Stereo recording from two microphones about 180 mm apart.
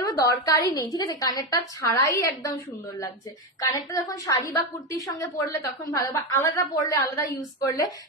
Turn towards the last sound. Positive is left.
turn(degrees=20)  # may be behind; listen again after turning